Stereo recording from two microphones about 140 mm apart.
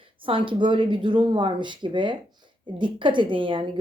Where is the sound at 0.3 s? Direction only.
40° right (ahead or behind).